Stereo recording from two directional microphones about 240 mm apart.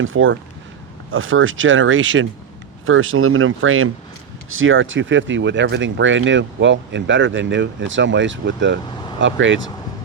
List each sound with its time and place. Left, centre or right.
0.0 s speech: right